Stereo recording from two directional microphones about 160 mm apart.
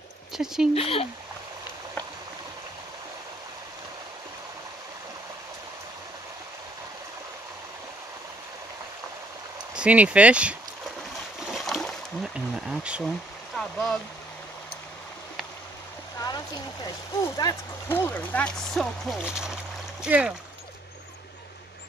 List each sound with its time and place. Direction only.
0.3 s speech: 5° right (ahead or behind)
0.7 s speech: 35° left (ahead or behind)
9.8 s speech: 10° right (ahead or behind)
11.3 s a sound: centre (ahead or behind)
13.6 s speech: centre (ahead or behind)
16.8 s speech: 25° left (ahead or behind); by 20.3 s 5° right (ahead or behind)